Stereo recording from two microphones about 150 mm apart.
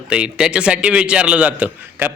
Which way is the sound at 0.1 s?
5° right (ahead or behind).